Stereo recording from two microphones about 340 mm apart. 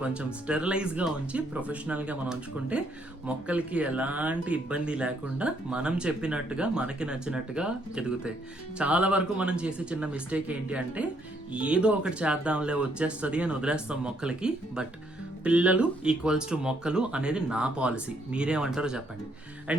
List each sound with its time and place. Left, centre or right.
0.0 s speech: centre